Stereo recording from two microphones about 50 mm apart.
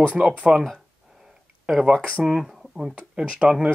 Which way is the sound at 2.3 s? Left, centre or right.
Centre.